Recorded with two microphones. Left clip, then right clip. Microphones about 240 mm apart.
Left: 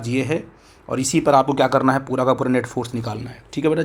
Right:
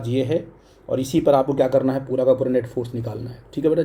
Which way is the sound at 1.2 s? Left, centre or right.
Left.